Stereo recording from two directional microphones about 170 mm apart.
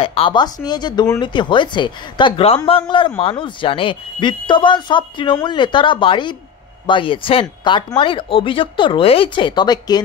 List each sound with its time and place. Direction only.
0.0 s speech: 35° left (ahead or behind)